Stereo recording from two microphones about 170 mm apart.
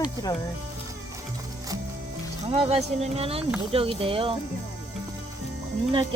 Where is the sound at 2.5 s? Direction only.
35° right (ahead or behind).